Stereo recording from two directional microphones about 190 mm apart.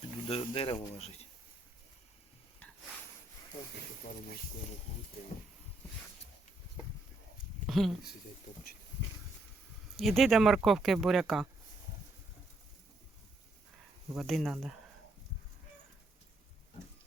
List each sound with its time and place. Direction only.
0.3 s speech: 30° left (ahead or behind)
4.0 s speech: 45° left (ahead or behind)
7.7 s speech: centre (ahead or behind)
10.0 s speech: centre (ahead or behind)
14.2 s speech: centre (ahead or behind)